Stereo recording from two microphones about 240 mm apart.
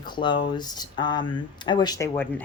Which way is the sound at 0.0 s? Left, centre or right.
Centre.